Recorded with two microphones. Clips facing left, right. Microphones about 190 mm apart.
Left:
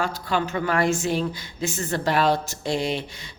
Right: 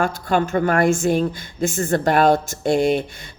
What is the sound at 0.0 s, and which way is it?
Speech, 50° right (ahead or behind).